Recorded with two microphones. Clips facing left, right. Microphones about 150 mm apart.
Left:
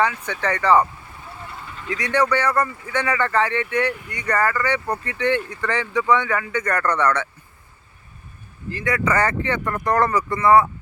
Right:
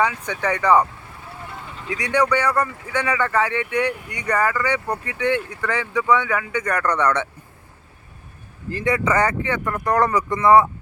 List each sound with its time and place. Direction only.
0.0 s speech: 15° right (ahead or behind)
1.9 s speech: 10° right (ahead or behind)
8.8 s speech: 20° right (ahead or behind)